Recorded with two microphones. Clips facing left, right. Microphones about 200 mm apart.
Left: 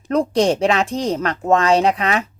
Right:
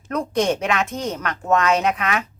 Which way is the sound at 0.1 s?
30° left (ahead or behind).